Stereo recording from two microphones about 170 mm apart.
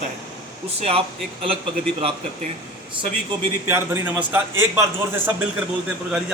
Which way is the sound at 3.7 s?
15° right (ahead or behind).